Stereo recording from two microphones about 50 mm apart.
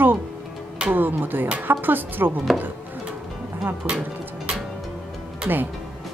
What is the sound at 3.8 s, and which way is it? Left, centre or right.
Speech, right.